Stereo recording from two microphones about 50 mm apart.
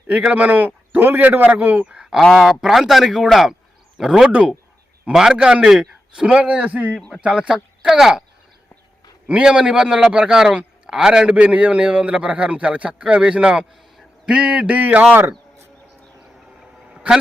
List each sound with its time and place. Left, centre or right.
0.3 s a man's voice: right
2.3 s speech: centre
4.3 s a man's voice: right
5.1 s a man's voice: centre; by 7.0 s right
7.2 s speech: centre
7.9 s speech: centre
9.4 s a man's voice: centre
11.3 s a man's voice: right